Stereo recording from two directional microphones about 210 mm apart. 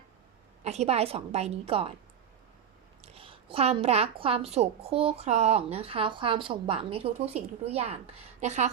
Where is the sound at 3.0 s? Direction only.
30° right (ahead or behind).